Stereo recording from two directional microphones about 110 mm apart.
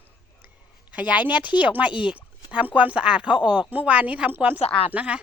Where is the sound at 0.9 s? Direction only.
15° right (ahead or behind).